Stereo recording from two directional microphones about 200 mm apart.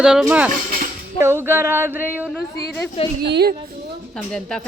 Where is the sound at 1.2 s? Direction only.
10° right (ahead or behind).